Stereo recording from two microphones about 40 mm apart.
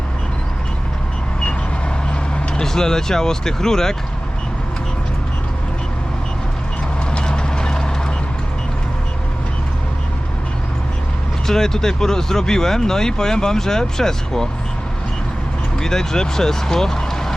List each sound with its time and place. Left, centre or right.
2.6 s speech: centre
7.2 s vehicle: left
11.4 s speech: centre
15.8 s speech: centre